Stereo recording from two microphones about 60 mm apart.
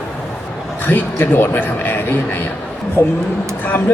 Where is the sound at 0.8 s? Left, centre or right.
Left.